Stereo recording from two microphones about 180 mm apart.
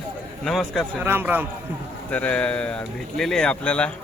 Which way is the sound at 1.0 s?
10° right (ahead or behind).